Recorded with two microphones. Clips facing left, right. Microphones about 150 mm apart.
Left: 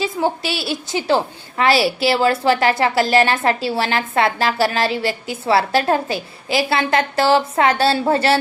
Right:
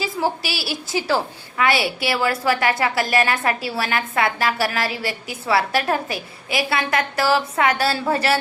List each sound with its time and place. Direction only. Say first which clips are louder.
0.0 s a woman's voice: left 3 dB; 25° left (ahead or behind)